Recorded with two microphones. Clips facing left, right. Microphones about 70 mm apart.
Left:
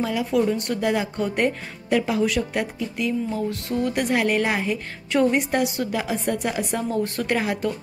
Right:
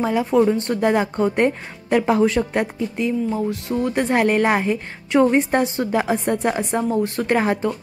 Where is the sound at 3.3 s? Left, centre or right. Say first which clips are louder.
Right 3 dB; right.